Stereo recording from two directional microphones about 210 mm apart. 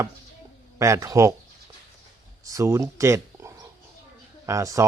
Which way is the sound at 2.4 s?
15° right (ahead or behind).